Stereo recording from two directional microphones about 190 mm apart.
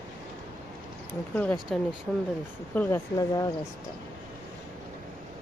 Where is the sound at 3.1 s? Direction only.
20° left (ahead or behind).